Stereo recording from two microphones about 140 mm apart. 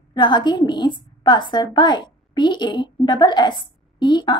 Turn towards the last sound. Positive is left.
turn(degrees=35)  # may be behind; listen again after turning